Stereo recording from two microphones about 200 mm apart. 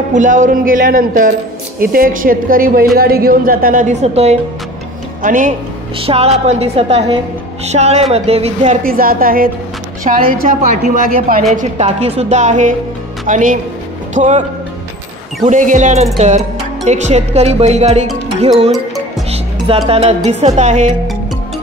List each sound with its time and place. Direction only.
0.1 s a woman's voice: 40° right (ahead or behind)
5.9 s music: 30° right (ahead or behind)
6.4 s speech: 30° right (ahead or behind)
8.8 s a woman's voice: 45° right (ahead or behind)
11.5 s speech: 35° right (ahead or behind)
15.4 s speech: 40° right (ahead or behind)
19.3 s music: 30° right (ahead or behind)
20.2 s speech: 35° right (ahead or behind)